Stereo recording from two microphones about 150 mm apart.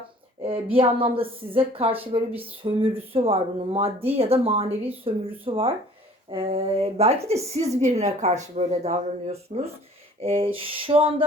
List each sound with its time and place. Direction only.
0.4 s a woman's voice: 35° right (ahead or behind)